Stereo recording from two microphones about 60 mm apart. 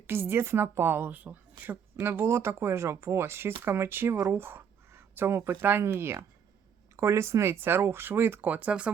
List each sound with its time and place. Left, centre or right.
0.1 s a woman's voice: right
2.0 s speech: right
8.4 s speech: right